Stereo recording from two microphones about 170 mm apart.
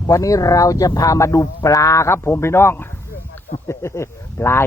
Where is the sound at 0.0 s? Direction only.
20° left (ahead or behind).